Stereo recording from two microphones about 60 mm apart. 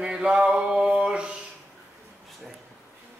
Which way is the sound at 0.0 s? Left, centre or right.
Centre.